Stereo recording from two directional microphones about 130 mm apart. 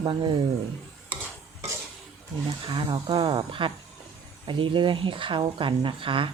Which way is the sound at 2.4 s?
40° right (ahead or behind).